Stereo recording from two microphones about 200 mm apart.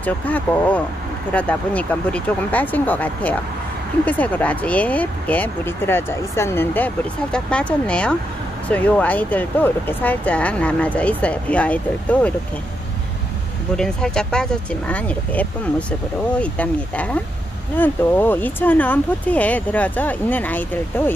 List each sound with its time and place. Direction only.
0.0 s speech: 5° left (ahead or behind)
13.7 s speech: 5° left (ahead or behind)